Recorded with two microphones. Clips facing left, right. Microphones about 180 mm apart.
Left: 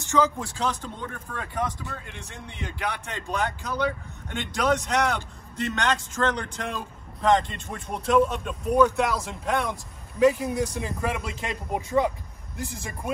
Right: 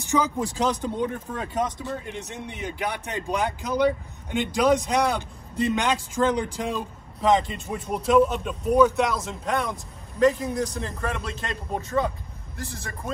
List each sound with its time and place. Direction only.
0.0 s a man's voice: 15° right (ahead or behind); by 13.1 s 15° left (ahead or behind)